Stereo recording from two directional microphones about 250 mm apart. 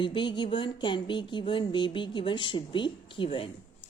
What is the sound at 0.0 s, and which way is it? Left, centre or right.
Speech, centre.